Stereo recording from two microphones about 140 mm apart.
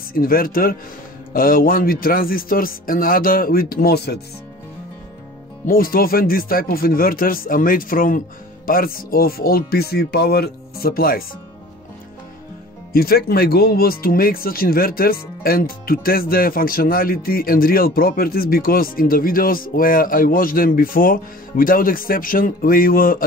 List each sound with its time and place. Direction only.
0.1 s speech: 90° left
5.7 s speech: 90° left
12.9 s speech: 90° left